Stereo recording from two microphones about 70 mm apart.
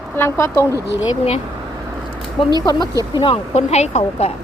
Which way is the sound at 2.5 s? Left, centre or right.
Left.